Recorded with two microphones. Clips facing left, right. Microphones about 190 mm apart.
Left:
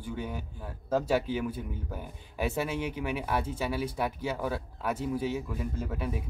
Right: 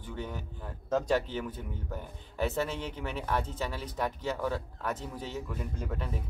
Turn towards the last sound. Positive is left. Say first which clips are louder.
# left 3 dB
turn(degrees=10)  # may be behind; listen again after turning